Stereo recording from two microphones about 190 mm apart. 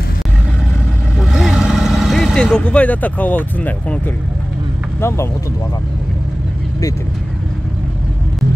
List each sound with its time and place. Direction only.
1.2 s vehicle: 5° right (ahead or behind)
5.0 s speech: 15° left (ahead or behind)